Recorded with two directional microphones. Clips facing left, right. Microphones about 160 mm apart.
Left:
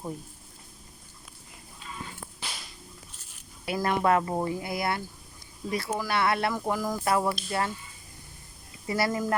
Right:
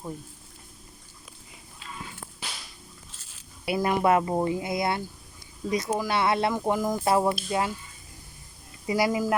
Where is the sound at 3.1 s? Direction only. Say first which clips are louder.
Even; 90° right.